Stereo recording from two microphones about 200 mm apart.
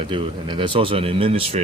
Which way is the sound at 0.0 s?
25° right (ahead or behind).